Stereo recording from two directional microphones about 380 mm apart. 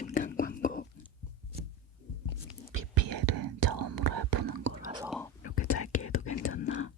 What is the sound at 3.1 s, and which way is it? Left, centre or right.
Whispering, right.